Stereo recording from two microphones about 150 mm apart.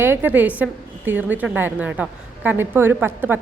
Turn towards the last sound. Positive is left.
turn(degrees=-15)  # may be behind; listen again after turning